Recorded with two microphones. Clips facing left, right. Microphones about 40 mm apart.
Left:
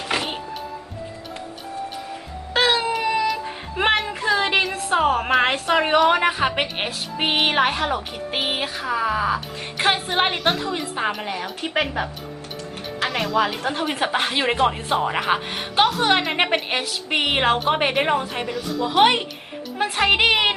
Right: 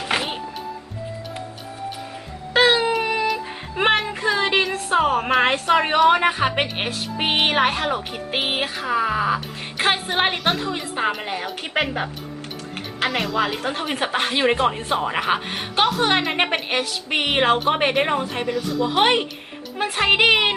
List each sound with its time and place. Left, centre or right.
2.5 s music: centre
3.0 s music: centre
3.2 s a woman's voice: centre
13.1 s speech: centre